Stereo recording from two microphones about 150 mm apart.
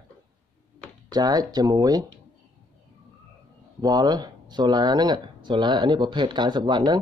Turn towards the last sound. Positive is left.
turn(degrees=-30)  # may be behind; listen again after turning